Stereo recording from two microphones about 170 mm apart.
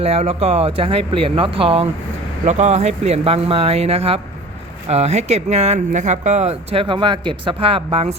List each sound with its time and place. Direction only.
0.0 s speech: 35° right (ahead or behind)